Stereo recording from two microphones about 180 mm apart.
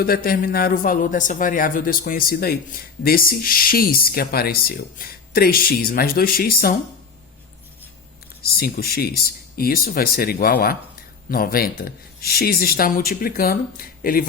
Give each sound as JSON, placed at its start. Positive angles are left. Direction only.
{"t": 0.0, "sound": "speech", "side_deg": 55}
{"t": 8.4, "sound": "speech", "side_deg": 55}